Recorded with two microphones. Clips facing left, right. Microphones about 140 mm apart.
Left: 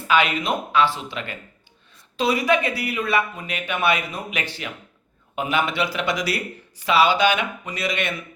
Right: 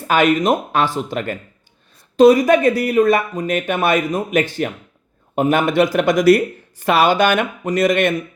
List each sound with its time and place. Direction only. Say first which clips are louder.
0.1 s speech: right 6 dB; 45° right (ahead or behind)